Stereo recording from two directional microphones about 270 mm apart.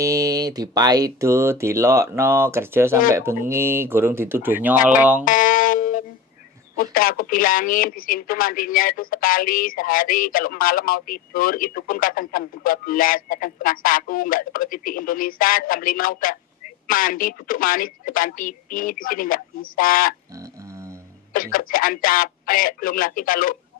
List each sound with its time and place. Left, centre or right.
0.0 s speech: centre
5.2 s a sound: left
6.8 s speech: left
21.3 s speech: left